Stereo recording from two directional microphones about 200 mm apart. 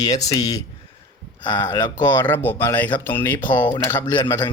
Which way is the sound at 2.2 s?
10° left (ahead or behind).